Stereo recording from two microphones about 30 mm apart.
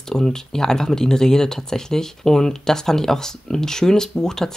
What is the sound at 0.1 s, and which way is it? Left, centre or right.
Speech, centre.